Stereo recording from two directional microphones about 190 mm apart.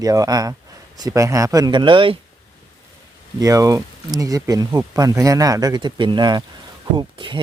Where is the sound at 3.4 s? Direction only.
20° right (ahead or behind).